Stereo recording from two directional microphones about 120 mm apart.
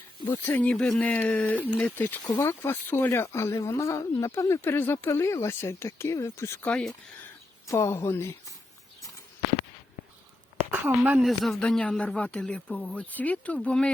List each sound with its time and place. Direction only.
0.3 s a man's voice: 15° left (ahead or behind)
6.7 s speech: 5° left (ahead or behind)
7.7 s speech: 25° left (ahead or behind)
10.6 s a sound: 15° right (ahead or behind)
11.2 s a man's voice: centre (ahead or behind)